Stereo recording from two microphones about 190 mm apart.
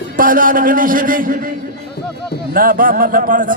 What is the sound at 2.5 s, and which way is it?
A man's voice, 50° right (ahead or behind).